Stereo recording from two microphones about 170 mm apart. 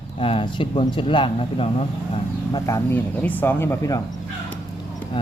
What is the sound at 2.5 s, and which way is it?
Speech, 20° left (ahead or behind).